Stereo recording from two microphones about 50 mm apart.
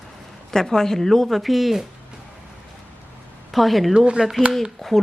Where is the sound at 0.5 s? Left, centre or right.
Centre.